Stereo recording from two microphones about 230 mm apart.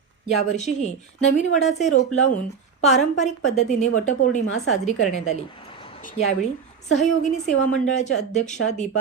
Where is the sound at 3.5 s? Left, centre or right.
Left.